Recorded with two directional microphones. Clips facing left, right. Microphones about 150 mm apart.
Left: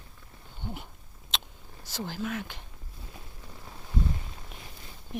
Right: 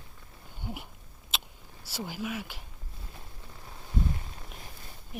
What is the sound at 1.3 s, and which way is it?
Vehicle, 5° right (ahead or behind).